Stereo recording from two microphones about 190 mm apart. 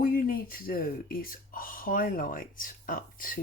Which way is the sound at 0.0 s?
50° left (ahead or behind).